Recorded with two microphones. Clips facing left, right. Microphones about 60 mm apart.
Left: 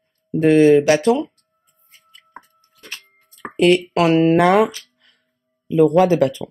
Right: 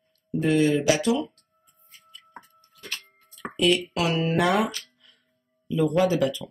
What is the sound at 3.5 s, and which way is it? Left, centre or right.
Speech, left.